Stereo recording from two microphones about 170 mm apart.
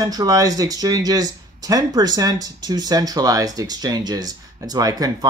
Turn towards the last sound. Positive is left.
turn(degrees=-20)  # may be behind; listen again after turning